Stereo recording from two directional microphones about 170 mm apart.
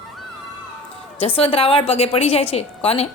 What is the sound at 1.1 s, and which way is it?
A woman's voice, 35° left (ahead or behind).